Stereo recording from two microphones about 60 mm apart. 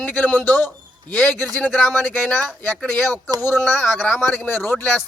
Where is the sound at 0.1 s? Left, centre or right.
Left.